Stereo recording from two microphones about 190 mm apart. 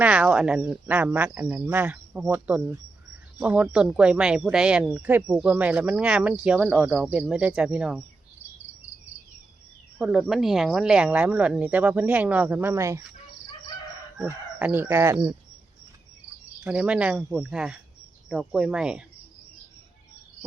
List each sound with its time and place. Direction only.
0.0 s speech: 5° right (ahead or behind)
10.0 s speech: 5° right (ahead or behind)
14.2 s chicken: 10° right (ahead or behind)
16.6 s speech: 5° right (ahead or behind)